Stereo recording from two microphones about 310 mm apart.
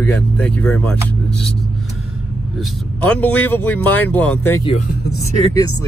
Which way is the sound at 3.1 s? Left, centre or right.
Centre.